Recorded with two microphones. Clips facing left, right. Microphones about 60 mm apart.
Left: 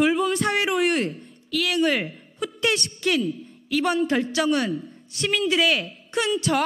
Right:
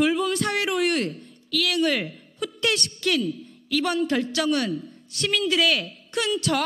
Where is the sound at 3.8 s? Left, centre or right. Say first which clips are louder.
Left 1 dB; centre.